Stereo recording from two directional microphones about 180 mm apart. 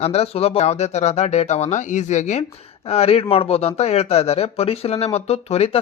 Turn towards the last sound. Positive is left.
turn(degrees=35)  # may be behind; listen again after turning